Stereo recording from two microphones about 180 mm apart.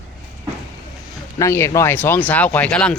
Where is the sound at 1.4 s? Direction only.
15° left (ahead or behind).